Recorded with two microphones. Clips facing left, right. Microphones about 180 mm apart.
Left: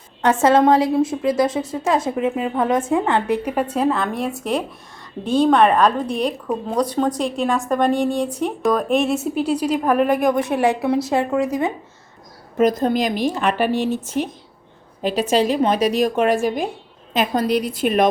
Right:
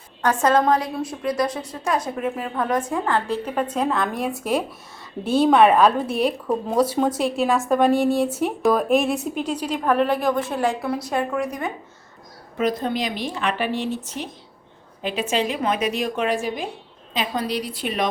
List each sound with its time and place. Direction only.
0.2 s a woman's voice: 25° left (ahead or behind)
12.5 s a woman's voice: 45° left (ahead or behind)